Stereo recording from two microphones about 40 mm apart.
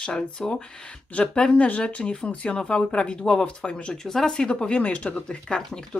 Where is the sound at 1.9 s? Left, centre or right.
Left.